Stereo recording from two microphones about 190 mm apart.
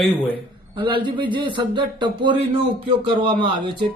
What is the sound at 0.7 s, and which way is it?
Speech, 25° right (ahead or behind).